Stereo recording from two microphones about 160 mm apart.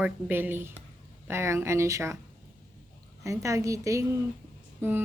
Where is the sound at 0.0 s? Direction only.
10° right (ahead or behind).